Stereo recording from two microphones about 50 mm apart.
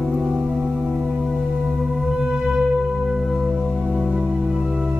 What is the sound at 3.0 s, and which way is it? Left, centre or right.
Music, centre.